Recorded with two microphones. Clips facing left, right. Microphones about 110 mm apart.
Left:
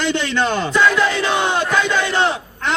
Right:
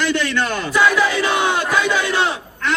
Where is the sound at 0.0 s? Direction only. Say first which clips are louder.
Left 1 dB; 25° left (ahead or behind).